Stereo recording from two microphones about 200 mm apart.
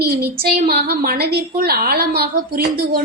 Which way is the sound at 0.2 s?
50° right (ahead or behind).